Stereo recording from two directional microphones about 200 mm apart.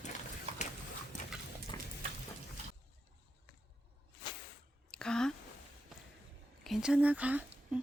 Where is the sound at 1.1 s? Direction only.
40° left (ahead or behind).